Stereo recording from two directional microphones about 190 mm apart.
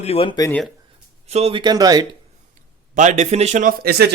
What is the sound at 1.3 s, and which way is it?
Speech, 30° right (ahead or behind).